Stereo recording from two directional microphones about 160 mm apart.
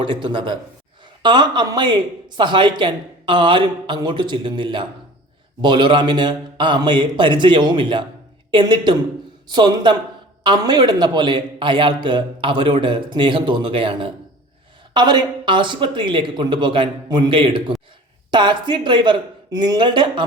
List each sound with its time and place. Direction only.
0.0 s a man's voice: 30° right (ahead or behind)